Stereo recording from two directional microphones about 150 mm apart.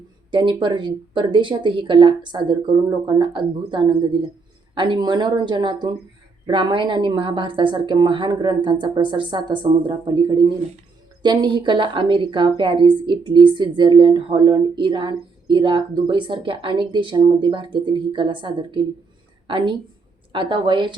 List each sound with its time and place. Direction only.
0.3 s a woman's voice: 30° right (ahead or behind)